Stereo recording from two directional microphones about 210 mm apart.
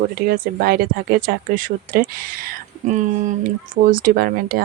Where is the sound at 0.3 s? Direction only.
45° right (ahead or behind).